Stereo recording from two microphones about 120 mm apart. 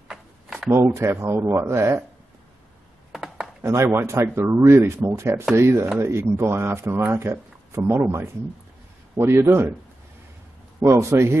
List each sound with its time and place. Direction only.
0.7 s speech: 25° right (ahead or behind)
3.1 s a sound: 5° right (ahead or behind)
3.6 s speech: 20° right (ahead or behind)
10.8 s speech: 25° right (ahead or behind)